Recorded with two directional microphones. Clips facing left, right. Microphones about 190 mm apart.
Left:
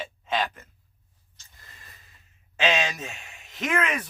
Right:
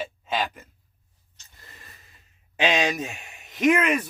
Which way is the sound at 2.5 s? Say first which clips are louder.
Right 2 dB; 15° right (ahead or behind).